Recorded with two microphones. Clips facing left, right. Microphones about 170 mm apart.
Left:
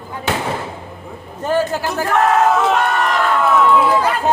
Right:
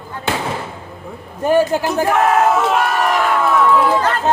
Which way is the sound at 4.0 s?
10° left (ahead or behind).